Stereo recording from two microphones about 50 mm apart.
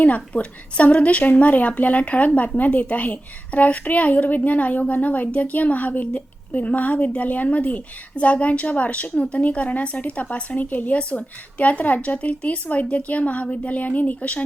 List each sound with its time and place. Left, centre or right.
0.0 s a woman's voice: left